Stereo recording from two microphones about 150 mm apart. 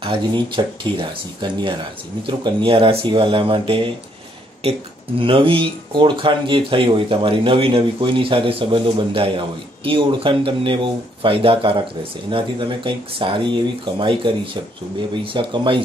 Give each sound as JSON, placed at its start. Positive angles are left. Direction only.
{"t": 0.0, "sound": "speech", "side_deg": -35}